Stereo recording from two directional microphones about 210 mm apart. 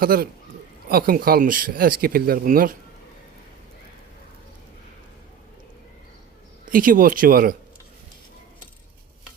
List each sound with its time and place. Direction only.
0.0 s speech: 45° right (ahead or behind)
6.7 s speech: 40° right (ahead or behind)